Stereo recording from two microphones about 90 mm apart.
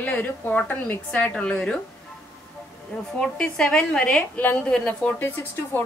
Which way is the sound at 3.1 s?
10° left (ahead or behind).